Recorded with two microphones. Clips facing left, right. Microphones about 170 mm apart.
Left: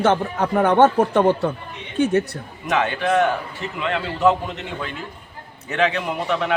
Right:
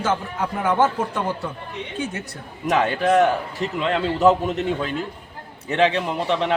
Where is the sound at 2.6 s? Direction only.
35° right (ahead or behind).